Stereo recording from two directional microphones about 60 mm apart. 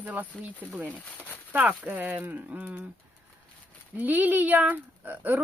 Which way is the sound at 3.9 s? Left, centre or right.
Right.